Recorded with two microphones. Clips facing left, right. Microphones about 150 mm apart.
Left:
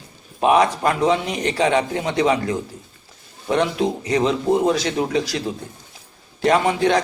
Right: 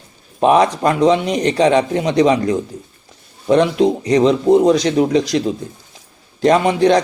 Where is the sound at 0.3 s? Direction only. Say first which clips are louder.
Right 4 dB; 25° right (ahead or behind).